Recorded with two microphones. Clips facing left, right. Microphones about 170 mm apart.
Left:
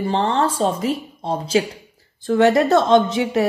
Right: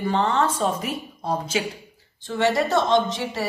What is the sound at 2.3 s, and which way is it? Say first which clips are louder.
A woman's voice: left 7 dB; 50° left (ahead or behind).